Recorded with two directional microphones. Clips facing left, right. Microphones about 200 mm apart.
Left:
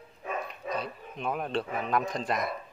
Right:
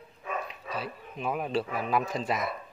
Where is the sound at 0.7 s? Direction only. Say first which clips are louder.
Left 1 dB; 5° right (ahead or behind).